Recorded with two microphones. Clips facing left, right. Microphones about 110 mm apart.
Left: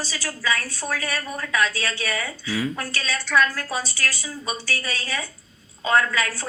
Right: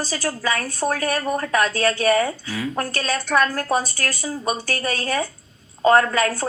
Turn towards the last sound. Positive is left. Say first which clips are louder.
# right 4 dB
turn(degrees=-45)  # may be behind; listen again after turning